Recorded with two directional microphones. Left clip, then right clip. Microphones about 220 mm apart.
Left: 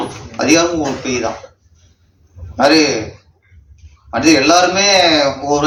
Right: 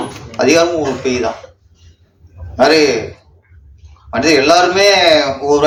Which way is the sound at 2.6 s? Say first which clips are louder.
Right 1 dB; 50° right (ahead or behind).